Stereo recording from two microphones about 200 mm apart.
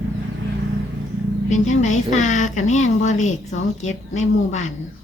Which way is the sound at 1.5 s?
35° left (ahead or behind).